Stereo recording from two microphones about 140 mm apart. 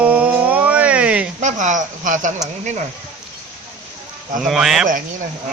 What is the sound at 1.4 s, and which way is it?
Speech, 60° right (ahead or behind).